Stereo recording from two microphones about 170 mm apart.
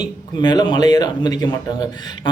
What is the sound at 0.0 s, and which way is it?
Speech, 25° left (ahead or behind).